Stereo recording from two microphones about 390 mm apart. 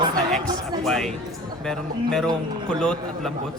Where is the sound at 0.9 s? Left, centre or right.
Centre.